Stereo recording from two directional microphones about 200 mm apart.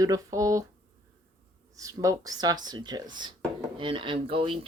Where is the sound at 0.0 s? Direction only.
15° right (ahead or behind).